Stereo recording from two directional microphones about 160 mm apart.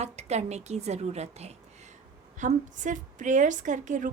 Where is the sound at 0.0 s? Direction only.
45° right (ahead or behind).